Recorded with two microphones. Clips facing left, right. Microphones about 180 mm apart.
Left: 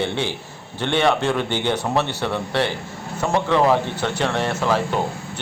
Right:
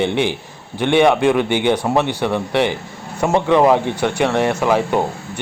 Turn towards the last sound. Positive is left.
turn(degrees=-15)  # may be behind; listen again after turning